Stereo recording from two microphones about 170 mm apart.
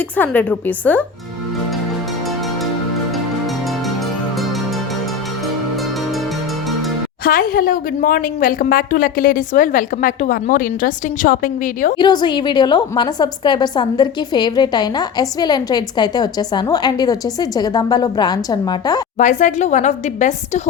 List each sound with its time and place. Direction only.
7.3 s a woman's voice: 60° left (ahead or behind)
11.9 s a woman's voice: 25° left (ahead or behind)
19.2 s a woman's voice: 45° left (ahead or behind)